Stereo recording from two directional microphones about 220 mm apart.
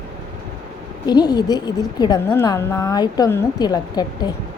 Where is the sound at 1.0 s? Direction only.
20° left (ahead or behind).